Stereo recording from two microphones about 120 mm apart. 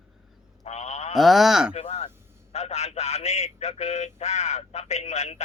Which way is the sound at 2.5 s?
65° left (ahead or behind).